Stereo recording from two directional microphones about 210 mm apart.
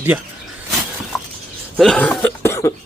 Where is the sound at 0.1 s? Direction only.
10° right (ahead or behind).